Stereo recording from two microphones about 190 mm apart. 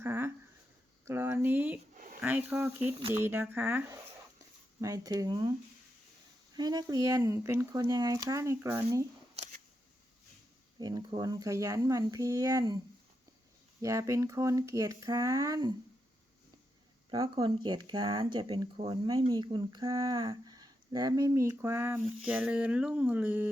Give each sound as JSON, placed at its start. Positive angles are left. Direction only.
{"t": 0.0, "sound": "a sound", "side_deg": -10}
{"t": 2.2, "sound": "speech", "side_deg": -10}
{"t": 6.6, "sound": "speech", "side_deg": -20}
{"t": 9.3, "sound": "a sound", "side_deg": -35}
{"t": 10.8, "sound": "speech", "side_deg": -20}
{"t": 13.8, "sound": "speech", "side_deg": -15}
{"t": 17.1, "sound": "speech", "side_deg": -25}